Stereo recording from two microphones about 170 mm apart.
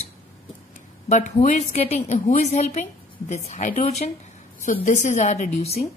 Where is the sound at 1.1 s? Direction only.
45° left (ahead or behind).